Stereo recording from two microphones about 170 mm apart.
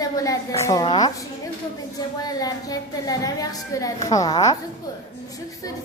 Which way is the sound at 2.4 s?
20° left (ahead or behind).